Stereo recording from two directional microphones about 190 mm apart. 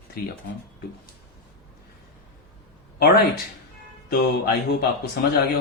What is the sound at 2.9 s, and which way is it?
Speech, 55° left (ahead or behind).